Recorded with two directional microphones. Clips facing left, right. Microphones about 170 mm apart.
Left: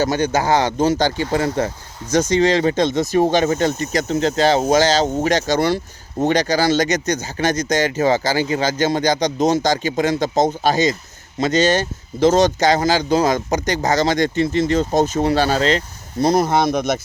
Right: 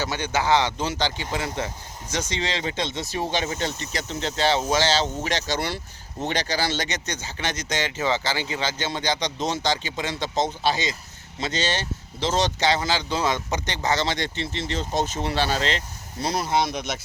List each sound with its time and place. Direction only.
0.0 s speech: 45° left (ahead or behind)